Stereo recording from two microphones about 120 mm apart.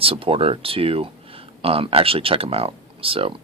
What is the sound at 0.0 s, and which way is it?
Speech, 50° right (ahead or behind).